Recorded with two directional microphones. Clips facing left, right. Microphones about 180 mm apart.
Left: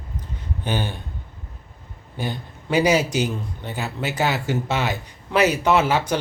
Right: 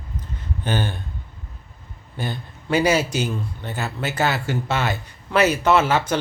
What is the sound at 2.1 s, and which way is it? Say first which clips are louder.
A man's voice: left 1 dB; 15° left (ahead or behind).